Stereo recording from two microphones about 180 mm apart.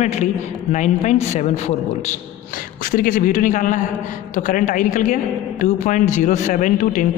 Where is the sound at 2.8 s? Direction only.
50° left (ahead or behind).